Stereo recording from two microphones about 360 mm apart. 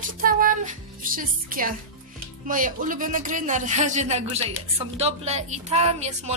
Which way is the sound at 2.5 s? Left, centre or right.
Right.